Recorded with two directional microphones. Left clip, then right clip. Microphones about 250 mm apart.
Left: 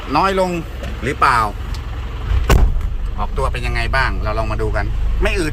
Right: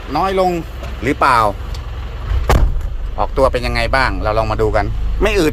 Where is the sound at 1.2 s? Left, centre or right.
Right.